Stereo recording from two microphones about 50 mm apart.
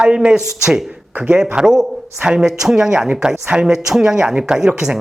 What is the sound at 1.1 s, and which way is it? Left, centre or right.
Speech, right.